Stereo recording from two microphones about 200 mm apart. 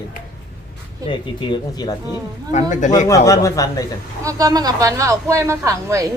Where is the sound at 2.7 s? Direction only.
35° left (ahead or behind).